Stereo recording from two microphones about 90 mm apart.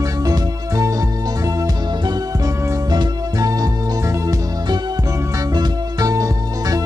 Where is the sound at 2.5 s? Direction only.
35° right (ahead or behind).